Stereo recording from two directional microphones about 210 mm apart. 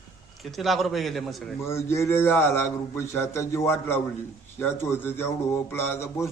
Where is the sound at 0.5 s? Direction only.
Centre (ahead or behind).